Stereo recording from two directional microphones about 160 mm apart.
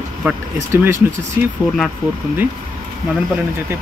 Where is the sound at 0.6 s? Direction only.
15° right (ahead or behind).